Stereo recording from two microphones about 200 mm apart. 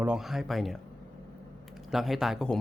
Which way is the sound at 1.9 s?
Centre (ahead or behind).